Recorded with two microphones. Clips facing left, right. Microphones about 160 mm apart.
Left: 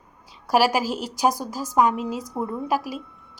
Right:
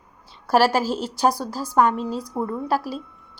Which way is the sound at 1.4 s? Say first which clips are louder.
Right 1 dB; 15° left (ahead or behind).